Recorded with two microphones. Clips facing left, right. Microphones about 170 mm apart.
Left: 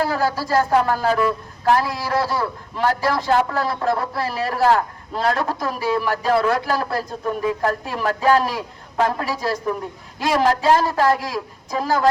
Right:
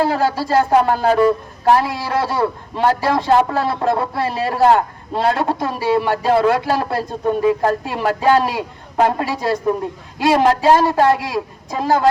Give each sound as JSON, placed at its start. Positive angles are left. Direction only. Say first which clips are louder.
{"t": 0.0, "sound": "speech", "louder": "right 4 dB", "side_deg": -25}